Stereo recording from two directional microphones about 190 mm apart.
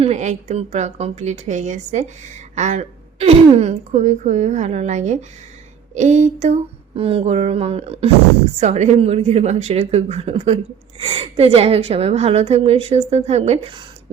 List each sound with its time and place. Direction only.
0.0 s a woman's voice: 35° right (ahead or behind)